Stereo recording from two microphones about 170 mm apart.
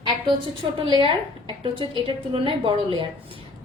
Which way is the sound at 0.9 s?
30° right (ahead or behind).